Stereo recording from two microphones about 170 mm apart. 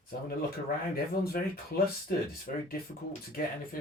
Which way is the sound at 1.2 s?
65° left (ahead or behind).